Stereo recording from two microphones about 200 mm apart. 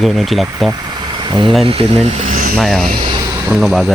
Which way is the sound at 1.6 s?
30° right (ahead or behind).